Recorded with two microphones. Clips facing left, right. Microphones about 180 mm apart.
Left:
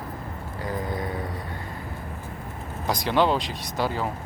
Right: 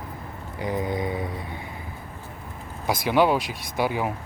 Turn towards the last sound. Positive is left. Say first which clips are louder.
# right 2 dB
turn(degrees=-15)  # may be behind; listen again after turning